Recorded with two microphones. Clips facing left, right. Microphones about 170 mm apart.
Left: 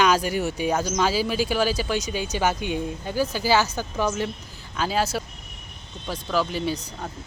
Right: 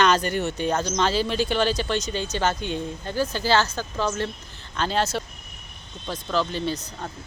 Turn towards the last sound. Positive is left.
turn(degrees=10)  # may be behind; listen again after turning